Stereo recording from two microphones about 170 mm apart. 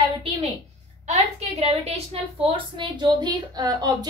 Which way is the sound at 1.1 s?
40° right (ahead or behind).